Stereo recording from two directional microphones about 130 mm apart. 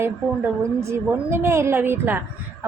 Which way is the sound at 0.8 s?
20° right (ahead or behind).